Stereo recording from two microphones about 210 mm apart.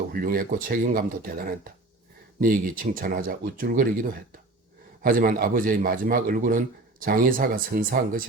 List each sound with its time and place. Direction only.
0.1 s speech: 45° right (ahead or behind)
5.0 s a man's voice: 45° right (ahead or behind)